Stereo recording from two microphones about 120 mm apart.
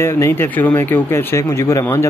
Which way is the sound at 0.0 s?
20° left (ahead or behind).